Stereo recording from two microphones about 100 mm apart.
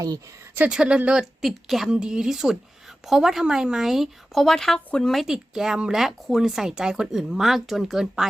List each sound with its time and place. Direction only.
0.5 s speech: 10° right (ahead or behind)